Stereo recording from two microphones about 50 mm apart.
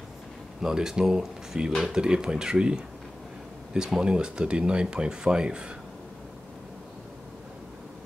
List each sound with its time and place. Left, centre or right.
0.6 s speech: centre